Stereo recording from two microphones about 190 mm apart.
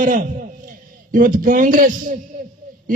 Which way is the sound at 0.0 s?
45° right (ahead or behind).